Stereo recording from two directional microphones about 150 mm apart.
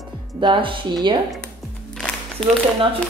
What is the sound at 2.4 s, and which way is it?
Speech, 5° left (ahead or behind).